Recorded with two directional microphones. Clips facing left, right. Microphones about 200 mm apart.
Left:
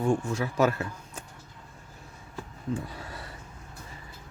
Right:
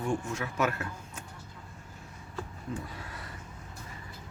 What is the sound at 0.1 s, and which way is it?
Speech, 30° left (ahead or behind).